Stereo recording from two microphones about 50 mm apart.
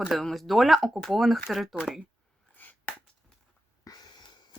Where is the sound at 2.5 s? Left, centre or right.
Left.